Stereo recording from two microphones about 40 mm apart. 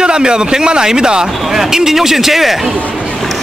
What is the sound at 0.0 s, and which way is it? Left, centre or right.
Speech, right.